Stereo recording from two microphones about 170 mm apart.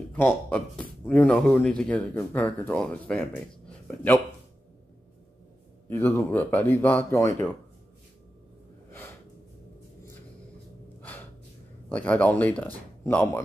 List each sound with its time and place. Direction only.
0.1 s speech: 10° left (ahead or behind)
5.9 s speech: 10° left (ahead or behind)
11.0 s gasp: 10° left (ahead or behind)
11.9 s speech: 10° left (ahead or behind)